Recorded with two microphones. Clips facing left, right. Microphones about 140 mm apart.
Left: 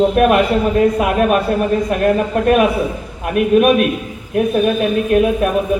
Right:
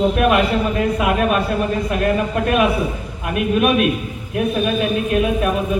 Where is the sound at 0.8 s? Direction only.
45° left (ahead or behind).